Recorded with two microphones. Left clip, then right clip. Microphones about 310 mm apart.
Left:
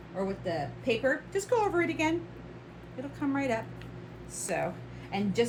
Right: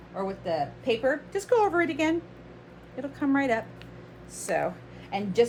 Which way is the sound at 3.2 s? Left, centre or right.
Right.